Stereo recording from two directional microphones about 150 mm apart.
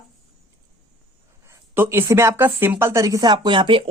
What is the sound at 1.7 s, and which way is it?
Speech, 15° right (ahead or behind).